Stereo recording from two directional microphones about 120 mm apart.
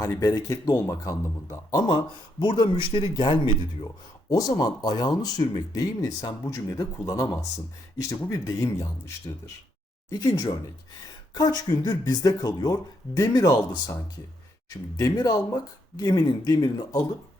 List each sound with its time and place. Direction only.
0.0 s speech: 30° left (ahead or behind)
2.4 s speech: 40° left (ahead or behind)
4.3 s speech: 30° left (ahead or behind)